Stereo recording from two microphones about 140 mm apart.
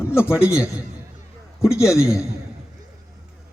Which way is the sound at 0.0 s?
15° left (ahead or behind).